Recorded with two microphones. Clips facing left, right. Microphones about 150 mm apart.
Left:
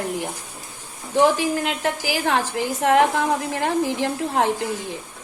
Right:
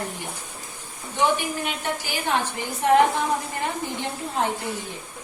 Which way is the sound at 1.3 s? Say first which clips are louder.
Left 5 dB; 90° left.